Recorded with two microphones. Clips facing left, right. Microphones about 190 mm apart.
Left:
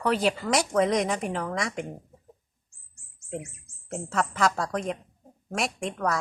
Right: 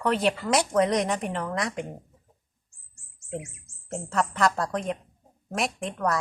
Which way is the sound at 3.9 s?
Centre (ahead or behind).